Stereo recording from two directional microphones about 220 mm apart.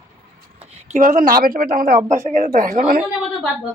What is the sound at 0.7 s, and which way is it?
Speech, 30° right (ahead or behind).